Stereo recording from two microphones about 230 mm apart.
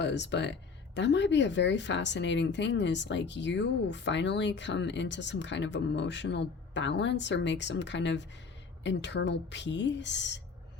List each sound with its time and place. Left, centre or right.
0.0 s speech: left